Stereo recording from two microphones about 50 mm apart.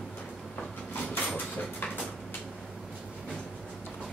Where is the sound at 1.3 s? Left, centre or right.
Left.